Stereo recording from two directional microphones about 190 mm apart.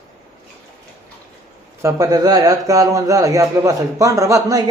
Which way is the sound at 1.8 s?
20° right (ahead or behind).